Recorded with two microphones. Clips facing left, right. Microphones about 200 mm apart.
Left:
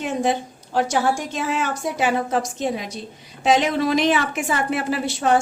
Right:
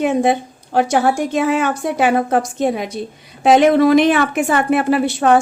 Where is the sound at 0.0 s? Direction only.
60° right (ahead or behind).